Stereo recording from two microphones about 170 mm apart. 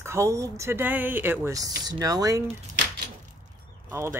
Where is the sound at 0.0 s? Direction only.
15° right (ahead or behind).